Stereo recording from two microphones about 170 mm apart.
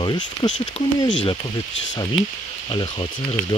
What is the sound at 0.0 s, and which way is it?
Speech, 25° left (ahead or behind).